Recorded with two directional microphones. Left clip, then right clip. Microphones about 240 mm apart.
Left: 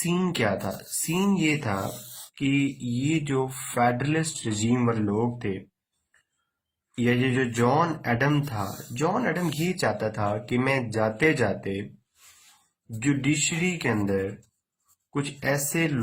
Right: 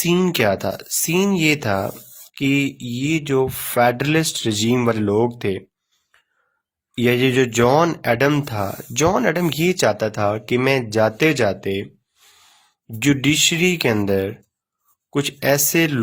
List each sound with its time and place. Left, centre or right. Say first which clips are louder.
0.0 s speech: right 8 dB; right
6.9 s speech: right 8 dB; right
13.1 s speech: right 9 dB; right